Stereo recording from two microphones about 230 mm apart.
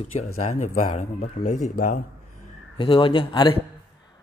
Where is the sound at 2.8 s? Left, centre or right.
Left.